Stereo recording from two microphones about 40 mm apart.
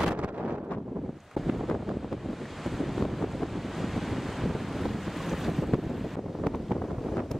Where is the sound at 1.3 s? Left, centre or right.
Centre.